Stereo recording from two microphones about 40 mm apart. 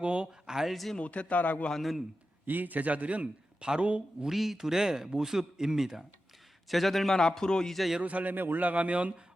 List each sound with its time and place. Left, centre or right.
0.0 s a sound: right
0.6 s a man's voice: centre
0.9 s speech: left
1.8 s a man's voice: centre
2.5 s a man's voice: right
3.6 s a man's voice: centre
3.8 s a man's voice: right
4.3 s speech: centre
6.7 s a man's voice: centre
7.1 s a man's voice: centre
8.0 s a man's voice: right